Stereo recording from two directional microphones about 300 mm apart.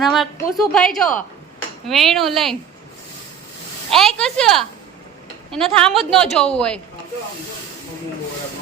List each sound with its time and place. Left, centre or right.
0.0 s a woman's voice: centre
3.9 s a woman's voice: centre